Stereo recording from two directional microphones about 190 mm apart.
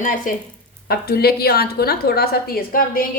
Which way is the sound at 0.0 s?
45° left (ahead or behind).